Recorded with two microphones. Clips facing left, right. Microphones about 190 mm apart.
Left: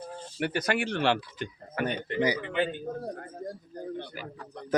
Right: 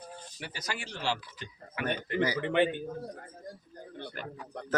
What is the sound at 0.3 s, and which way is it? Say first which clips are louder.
Speech: left 12 dB; 60° left (ahead or behind).